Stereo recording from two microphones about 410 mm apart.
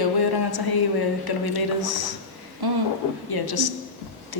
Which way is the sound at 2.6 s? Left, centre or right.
Right.